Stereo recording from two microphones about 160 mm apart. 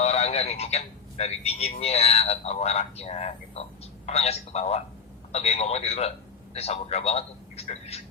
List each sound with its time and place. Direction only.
0.0 s a man's voice: 40° left (ahead or behind)